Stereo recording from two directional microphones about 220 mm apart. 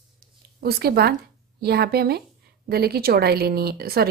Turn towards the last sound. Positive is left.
turn(degrees=-45)  # may be behind; listen again after turning